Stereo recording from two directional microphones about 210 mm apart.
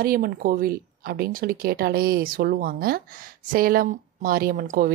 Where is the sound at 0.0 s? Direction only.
45° right (ahead or behind).